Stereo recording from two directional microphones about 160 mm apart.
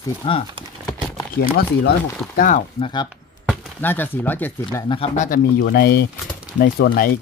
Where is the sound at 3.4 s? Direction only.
10° left (ahead or behind).